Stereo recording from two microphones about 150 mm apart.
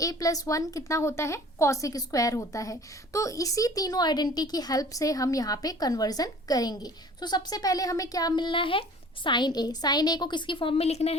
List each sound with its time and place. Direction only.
0.0 s a woman's voice: 25° left (ahead or behind); by 11.2 s 45° left (ahead or behind)